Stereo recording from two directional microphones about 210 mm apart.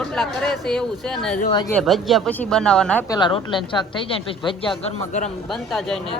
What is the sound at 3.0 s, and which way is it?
A woman's voice, 20° left (ahead or behind).